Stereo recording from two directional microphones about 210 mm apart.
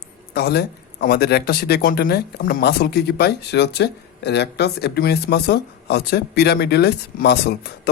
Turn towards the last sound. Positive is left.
turn(degrees=50)  # may be behind; listen again after turning